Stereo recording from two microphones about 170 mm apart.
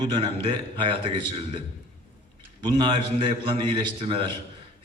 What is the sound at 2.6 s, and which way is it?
A man's voice, 30° right (ahead or behind).